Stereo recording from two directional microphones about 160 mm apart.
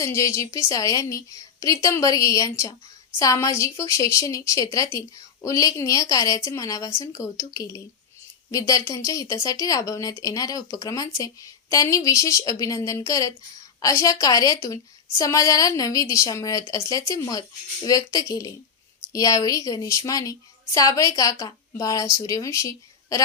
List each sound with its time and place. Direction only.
0.0 s a woman's voice: 20° left (ahead or behind)